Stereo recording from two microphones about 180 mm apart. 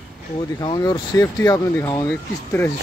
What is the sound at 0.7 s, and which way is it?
Speech, 20° left (ahead or behind).